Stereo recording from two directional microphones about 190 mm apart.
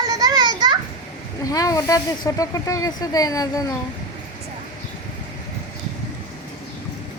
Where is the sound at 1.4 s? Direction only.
20° left (ahead or behind).